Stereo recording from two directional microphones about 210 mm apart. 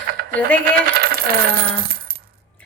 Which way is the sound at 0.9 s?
45° right (ahead or behind).